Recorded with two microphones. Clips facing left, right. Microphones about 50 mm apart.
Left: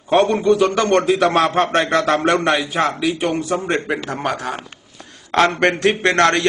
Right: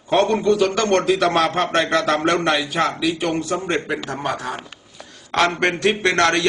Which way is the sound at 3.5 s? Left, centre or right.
Centre.